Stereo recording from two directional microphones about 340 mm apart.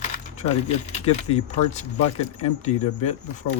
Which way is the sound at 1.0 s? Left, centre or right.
Centre.